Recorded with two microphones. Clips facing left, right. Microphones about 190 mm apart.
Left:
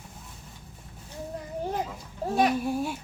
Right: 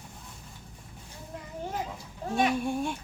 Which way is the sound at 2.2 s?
35° left (ahead or behind).